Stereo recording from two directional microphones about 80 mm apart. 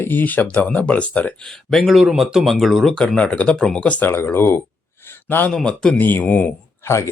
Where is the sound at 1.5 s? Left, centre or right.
Centre.